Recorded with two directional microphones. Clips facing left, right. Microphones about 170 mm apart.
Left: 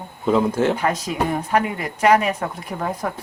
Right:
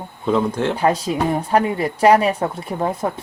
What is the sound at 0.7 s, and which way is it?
Speech, 30° right (ahead or behind).